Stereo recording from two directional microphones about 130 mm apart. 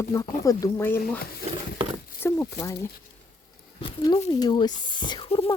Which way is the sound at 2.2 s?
25° left (ahead or behind).